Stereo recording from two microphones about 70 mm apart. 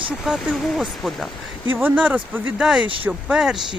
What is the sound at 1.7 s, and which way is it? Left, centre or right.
Speech, right.